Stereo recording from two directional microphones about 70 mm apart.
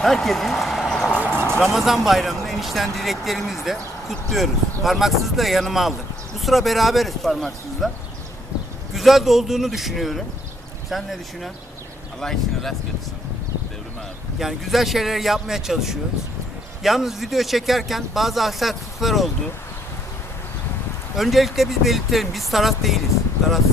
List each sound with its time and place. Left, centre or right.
0.0 s a sound: centre
1.2 s vehicle: right
1.6 s speech: centre
9.0 s speech: centre
14.3 s speech: centre
21.2 s speech: centre